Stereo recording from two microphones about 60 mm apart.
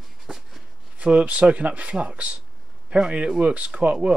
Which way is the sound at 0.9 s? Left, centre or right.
Right.